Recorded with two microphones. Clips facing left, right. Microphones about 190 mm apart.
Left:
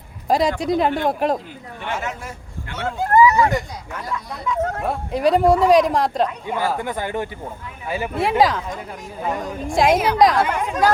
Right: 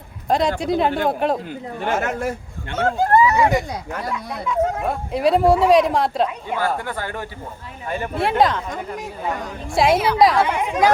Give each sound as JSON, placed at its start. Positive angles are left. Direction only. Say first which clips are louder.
{"t": 0.3, "sound": "speech", "louder": "left 1 dB", "side_deg": 0}
{"t": 1.8, "sound": "speech", "louder": "right 6 dB", "side_deg": -50}
{"t": 2.7, "sound": "speech", "louder": "right 1 dB", "side_deg": -40}
{"t": 3.3, "sound": "speech", "louder": "right 1 dB", "side_deg": -10}
{"t": 4.8, "sound": "speech", "louder": "even", "side_deg": 0}
{"t": 6.7, "sound": "speech", "louder": "left 3 dB", "side_deg": 20}
{"t": 7.9, "sound": "speech", "louder": "even", "side_deg": 5}
{"t": 9.7, "sound": "speech", "louder": "even", "side_deg": 0}